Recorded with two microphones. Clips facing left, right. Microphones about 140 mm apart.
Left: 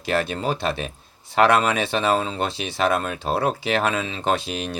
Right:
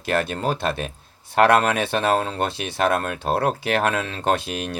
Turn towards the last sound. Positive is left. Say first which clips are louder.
# right 1 dB
turn(degrees=-55)  # may be behind; listen again after turning